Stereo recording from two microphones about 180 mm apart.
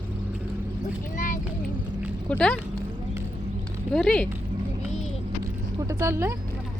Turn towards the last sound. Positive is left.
turn(degrees=-15)  # may be behind; listen again after turning